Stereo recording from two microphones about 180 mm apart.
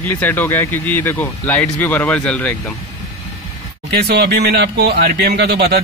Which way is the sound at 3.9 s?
65° right (ahead or behind).